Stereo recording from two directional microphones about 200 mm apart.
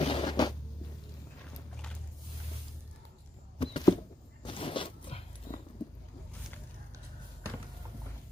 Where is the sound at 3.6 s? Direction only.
25° left (ahead or behind).